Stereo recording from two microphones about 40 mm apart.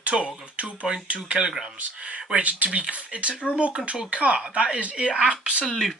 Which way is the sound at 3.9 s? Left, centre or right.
Centre.